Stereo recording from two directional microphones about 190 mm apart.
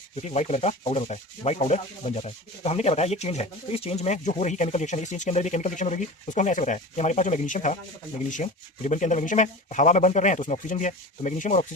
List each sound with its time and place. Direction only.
0.2 s sanding: 35° left (ahead or behind)